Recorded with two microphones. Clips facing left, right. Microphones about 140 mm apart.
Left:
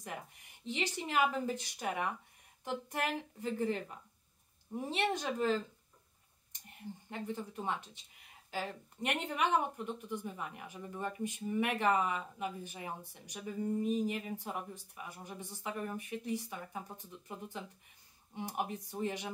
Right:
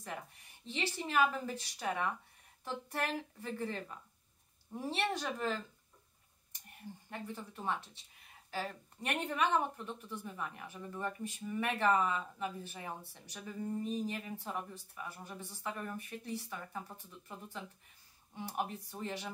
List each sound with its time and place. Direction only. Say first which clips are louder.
0.0 s speech: even; 15° left (ahead or behind)
4.7 s speech: left 2 dB; 20° left (ahead or behind)
7.1 s speech: left 4 dB; 20° left (ahead or behind)